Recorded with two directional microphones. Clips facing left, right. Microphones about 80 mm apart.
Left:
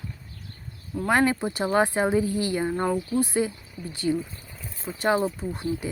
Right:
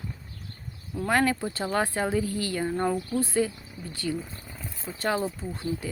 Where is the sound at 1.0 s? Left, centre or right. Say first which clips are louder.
Left 2 dB; left.